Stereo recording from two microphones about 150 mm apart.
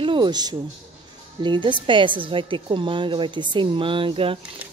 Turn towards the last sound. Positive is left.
turn(degrees=-35)  # may be behind; listen again after turning